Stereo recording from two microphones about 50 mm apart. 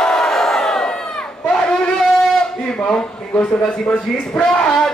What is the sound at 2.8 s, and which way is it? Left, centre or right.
Speech, left.